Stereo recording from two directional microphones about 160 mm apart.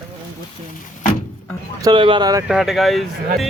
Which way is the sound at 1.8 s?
30° right (ahead or behind).